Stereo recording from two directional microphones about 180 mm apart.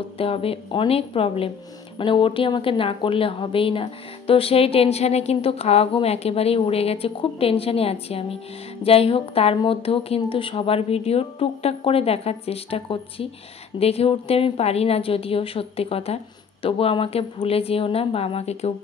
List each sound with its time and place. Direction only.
0.2 s a woman's voice: 30° left (ahead or behind)